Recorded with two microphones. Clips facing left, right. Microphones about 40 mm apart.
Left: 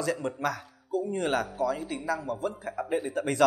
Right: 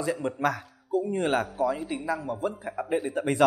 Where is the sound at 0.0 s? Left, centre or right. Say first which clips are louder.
Right 1 dB; centre.